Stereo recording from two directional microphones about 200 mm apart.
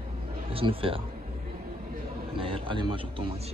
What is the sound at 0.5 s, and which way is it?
Speech, 25° right (ahead or behind).